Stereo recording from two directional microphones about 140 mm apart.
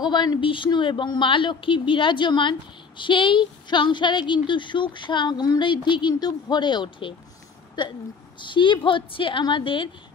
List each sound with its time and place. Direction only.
0.0 s speech: 30° left (ahead or behind)